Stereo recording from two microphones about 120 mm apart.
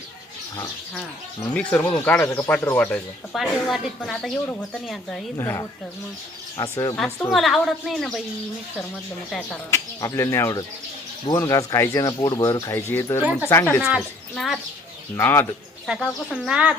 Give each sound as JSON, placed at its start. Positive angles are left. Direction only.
{"t": 1.5, "sound": "speech", "side_deg": 15}
{"t": 3.3, "sound": "a woman's voice", "side_deg": 0}
{"t": 5.4, "sound": "speech", "side_deg": 25}
{"t": 6.9, "sound": "a woman's voice", "side_deg": 5}
{"t": 9.7, "sound": "speech", "side_deg": 25}
{"t": 13.8, "sound": "a woman's voice", "side_deg": 0}
{"t": 15.1, "sound": "speech", "side_deg": 20}
{"t": 16.3, "sound": "a woman's voice", "side_deg": 0}